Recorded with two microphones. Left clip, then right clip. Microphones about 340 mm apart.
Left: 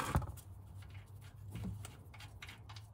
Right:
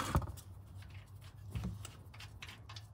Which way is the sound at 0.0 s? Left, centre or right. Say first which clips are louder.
Right 1 dB; centre.